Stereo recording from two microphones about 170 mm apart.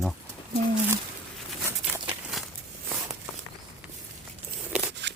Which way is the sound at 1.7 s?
15° right (ahead or behind).